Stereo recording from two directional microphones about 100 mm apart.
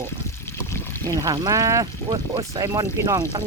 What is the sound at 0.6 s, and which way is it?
Pour, 25° left (ahead or behind).